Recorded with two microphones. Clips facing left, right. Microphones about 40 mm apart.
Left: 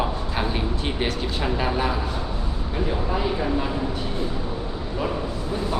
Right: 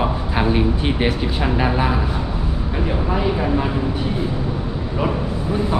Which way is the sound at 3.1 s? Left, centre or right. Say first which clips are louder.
Right 6 dB; centre.